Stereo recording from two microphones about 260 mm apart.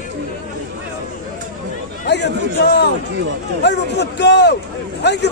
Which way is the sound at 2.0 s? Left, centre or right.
Left.